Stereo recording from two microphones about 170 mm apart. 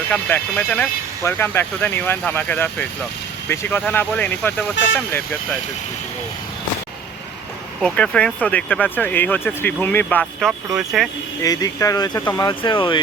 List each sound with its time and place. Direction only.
0.1 s speech: 10° left (ahead or behind)
7.8 s speech: 5° left (ahead or behind)
10.7 s speech: centre (ahead or behind)
11.4 s speech: 20° left (ahead or behind)